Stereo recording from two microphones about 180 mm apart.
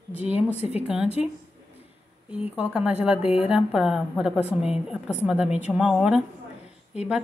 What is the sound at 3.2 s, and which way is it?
Speech, 35° left (ahead or behind).